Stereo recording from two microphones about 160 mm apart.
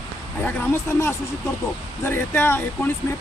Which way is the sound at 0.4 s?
15° left (ahead or behind).